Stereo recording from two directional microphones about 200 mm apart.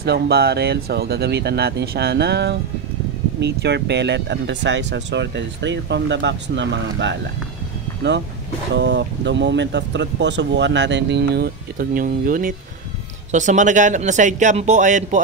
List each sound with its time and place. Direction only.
0.0 s speech: 55° right (ahead or behind)
8.7 s speech: 60° right (ahead or behind); by 15.1 s 40° right (ahead or behind)